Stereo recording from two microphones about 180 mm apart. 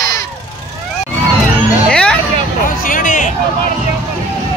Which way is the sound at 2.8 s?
45° left (ahead or behind).